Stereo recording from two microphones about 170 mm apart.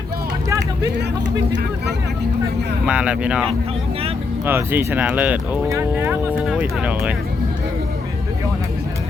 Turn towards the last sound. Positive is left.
turn(degrees=-10)  # may be behind; listen again after turning